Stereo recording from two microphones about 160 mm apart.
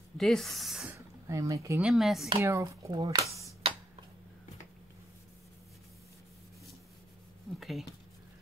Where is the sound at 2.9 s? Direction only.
30° right (ahead or behind).